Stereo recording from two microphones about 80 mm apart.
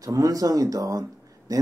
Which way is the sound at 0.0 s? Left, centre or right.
Right.